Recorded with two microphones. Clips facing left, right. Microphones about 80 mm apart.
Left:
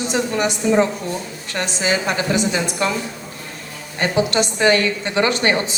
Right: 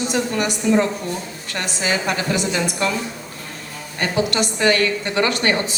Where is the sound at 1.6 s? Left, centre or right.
Left.